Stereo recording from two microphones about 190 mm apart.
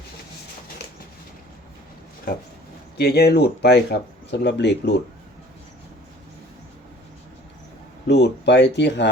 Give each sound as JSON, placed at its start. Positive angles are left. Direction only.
{"t": 3.0, "sound": "speech", "side_deg": 55}
{"t": 8.0, "sound": "speech", "side_deg": 60}